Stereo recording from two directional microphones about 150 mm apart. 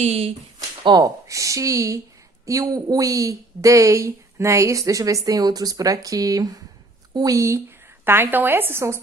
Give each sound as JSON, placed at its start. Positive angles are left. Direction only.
{"t": 0.0, "sound": "speech", "side_deg": -45}
{"t": 0.9, "sound": "speech", "side_deg": -25}